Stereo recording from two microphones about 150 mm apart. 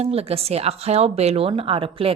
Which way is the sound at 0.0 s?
40° right (ahead or behind).